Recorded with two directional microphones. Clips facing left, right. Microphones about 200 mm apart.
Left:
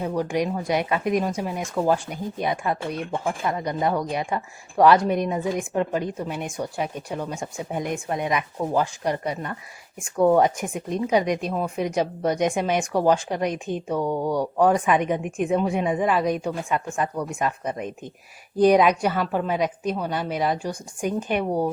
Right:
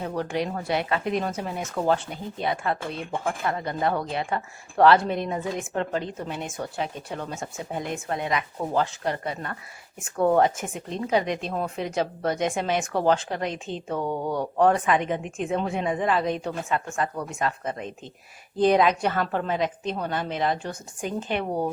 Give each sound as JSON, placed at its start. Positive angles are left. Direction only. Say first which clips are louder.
{"t": 0.2, "sound": "speech", "louder": "left 3 dB", "side_deg": 15}
{"t": 14.0, "sound": "speech", "louder": "left 3 dB", "side_deg": 0}
{"t": 14.3, "sound": "speech", "louder": "even", "side_deg": 15}